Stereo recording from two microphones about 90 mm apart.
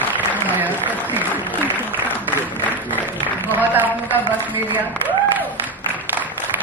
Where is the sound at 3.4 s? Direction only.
20° right (ahead or behind).